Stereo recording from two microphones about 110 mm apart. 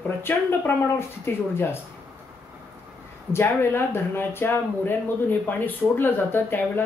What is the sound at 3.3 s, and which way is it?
Speech, 20° left (ahead or behind).